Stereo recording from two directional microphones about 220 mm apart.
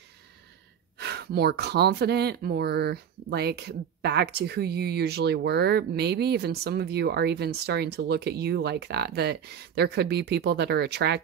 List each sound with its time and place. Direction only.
0.9 s speech: 50° right (ahead or behind)